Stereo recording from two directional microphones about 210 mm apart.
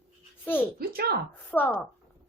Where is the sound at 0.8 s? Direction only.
45° right (ahead or behind).